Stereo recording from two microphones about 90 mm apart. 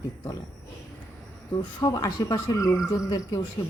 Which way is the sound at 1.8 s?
45° left (ahead or behind).